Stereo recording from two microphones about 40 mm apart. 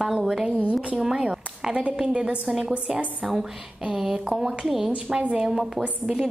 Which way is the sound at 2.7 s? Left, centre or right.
Right.